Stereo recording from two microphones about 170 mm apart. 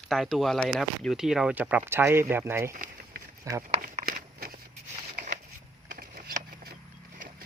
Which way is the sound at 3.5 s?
20° right (ahead or behind).